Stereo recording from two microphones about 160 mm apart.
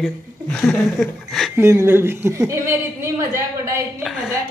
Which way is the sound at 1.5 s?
15° right (ahead or behind).